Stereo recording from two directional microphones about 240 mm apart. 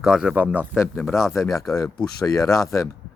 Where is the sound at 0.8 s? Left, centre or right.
Centre.